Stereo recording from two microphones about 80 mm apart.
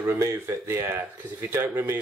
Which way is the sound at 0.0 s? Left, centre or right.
Right.